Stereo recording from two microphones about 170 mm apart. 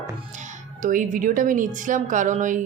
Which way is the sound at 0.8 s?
50° right (ahead or behind).